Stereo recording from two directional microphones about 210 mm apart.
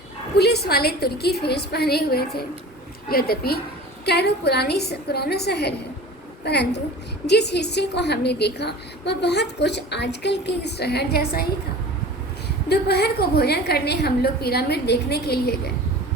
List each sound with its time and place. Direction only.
0.3 s a woman's voice: 50° left (ahead or behind)
12.6 s a woman's voice: 50° left (ahead or behind)